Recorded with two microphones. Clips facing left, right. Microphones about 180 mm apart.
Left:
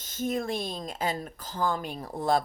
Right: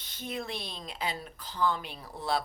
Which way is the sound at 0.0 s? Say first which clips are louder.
Left 8 dB; 45° left (ahead or behind).